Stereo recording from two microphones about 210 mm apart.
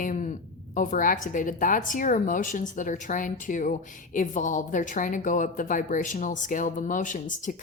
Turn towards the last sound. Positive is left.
turn(degrees=40)  # may be behind; listen again after turning